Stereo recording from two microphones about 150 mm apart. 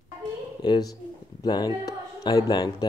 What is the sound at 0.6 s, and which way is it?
Speech, 30° left (ahead or behind).